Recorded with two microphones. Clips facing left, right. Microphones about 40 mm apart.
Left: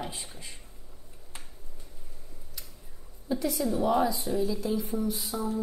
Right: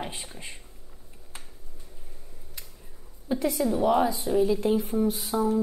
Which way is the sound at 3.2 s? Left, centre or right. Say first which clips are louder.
Right 3 dB; right.